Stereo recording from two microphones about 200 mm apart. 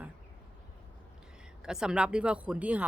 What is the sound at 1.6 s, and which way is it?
A woman's voice, 5° right (ahead or behind).